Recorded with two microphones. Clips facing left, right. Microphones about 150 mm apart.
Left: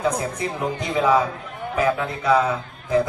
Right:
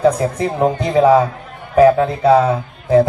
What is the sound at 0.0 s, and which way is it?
Speech, 35° right (ahead or behind).